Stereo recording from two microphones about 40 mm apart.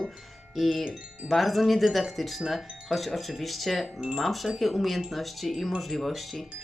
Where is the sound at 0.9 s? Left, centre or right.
Right.